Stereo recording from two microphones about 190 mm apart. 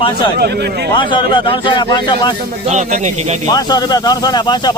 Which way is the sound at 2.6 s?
40° right (ahead or behind).